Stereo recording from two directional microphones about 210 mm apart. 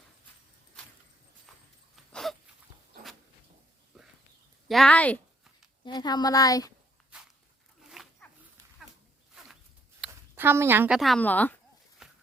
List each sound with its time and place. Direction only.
3.9 s a sound: centre (ahead or behind)
5.8 s a woman's voice: 20° left (ahead or behind)
7.1 s walk: 5° right (ahead or behind)
7.9 s zipper: centre (ahead or behind)
9.3 s a sound: centre (ahead or behind)
10.1 s speech: 10° right (ahead or behind); by 11.5 s 10° left (ahead or behind)
12.0 s walk: centre (ahead or behind)